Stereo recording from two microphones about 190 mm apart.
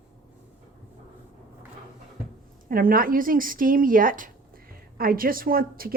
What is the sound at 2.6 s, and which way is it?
Speech, 50° right (ahead or behind).